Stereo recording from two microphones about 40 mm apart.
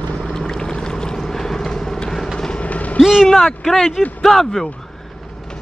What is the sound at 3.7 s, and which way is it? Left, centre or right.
Speech, centre.